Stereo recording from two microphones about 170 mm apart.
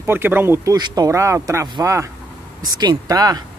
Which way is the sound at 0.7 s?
25° right (ahead or behind).